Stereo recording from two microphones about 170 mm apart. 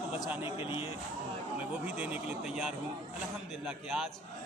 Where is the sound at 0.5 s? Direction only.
30° left (ahead or behind).